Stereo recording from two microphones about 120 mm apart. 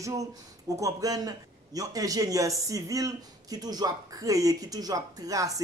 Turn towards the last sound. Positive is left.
turn(degrees=-30)  # may be behind; listen again after turning